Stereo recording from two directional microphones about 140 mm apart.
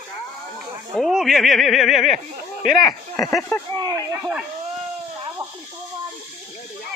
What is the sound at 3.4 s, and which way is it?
Speech, 20° left (ahead or behind).